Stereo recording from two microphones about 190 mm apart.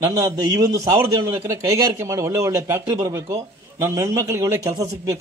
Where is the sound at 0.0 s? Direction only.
15° right (ahead or behind).